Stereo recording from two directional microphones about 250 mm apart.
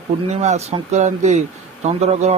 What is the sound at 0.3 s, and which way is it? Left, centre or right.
Speech, right.